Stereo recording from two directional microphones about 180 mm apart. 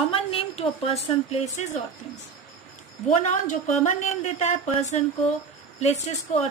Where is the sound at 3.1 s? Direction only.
40° left (ahead or behind).